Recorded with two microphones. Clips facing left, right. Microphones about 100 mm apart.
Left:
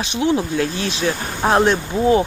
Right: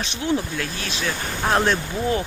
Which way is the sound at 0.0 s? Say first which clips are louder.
Left 5 dB; 20° left (ahead or behind).